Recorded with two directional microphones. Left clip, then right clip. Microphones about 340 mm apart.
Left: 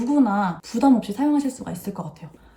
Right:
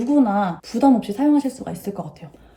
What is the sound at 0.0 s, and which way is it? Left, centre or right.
Speech, centre.